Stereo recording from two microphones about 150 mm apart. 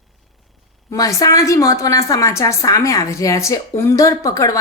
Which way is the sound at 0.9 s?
20° left (ahead or behind).